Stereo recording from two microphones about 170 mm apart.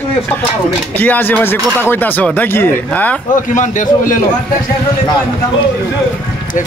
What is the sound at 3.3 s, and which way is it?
Speech, 50° left (ahead or behind).